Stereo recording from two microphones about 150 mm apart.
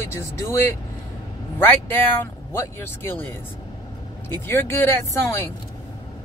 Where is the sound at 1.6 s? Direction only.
15° left (ahead or behind).